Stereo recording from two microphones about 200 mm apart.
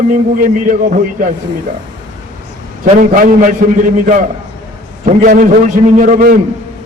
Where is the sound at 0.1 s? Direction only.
40° right (ahead or behind).